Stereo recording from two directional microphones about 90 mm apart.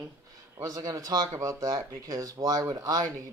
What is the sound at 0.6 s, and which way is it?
Speech, 40° right (ahead or behind).